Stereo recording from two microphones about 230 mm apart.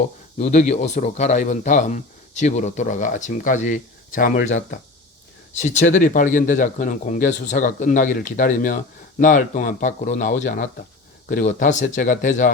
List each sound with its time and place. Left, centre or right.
0.3 s speech: left
5.5 s speech: left